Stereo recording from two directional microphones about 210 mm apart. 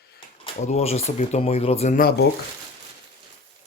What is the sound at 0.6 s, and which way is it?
Speech, 30° left (ahead or behind).